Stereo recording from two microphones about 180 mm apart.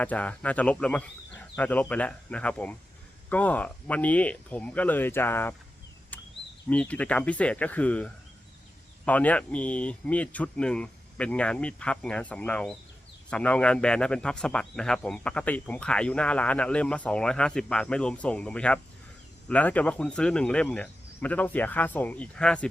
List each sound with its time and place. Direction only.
0.0 s speech: 10° left (ahead or behind)
6.7 s a man's voice: 10° left (ahead or behind)